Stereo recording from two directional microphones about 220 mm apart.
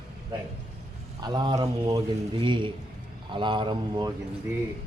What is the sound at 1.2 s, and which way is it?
Speech, 20° right (ahead or behind).